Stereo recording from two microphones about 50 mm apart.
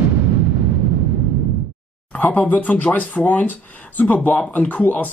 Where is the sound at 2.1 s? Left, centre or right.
Left.